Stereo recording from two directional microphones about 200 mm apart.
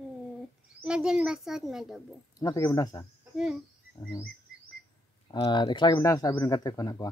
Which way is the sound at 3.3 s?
Centre (ahead or behind).